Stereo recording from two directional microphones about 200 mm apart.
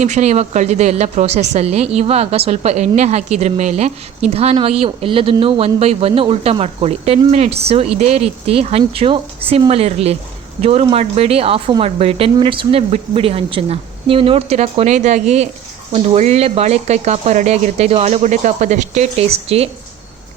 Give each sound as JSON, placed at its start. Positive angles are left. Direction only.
{"t": 0.0, "sound": "speech", "side_deg": -35}